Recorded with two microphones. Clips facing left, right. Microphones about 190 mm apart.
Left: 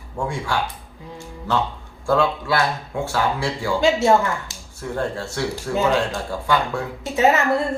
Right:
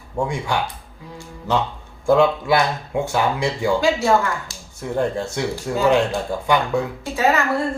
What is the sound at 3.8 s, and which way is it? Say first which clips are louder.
Speech: left 4 dB; 20° left (ahead or behind).